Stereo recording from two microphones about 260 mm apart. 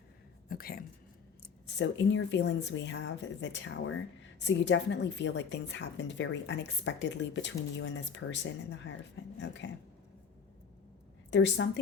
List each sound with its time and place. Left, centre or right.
0.4 s a sound: left
1.4 s a woman's voice: left
11.3 s a woman's voice: left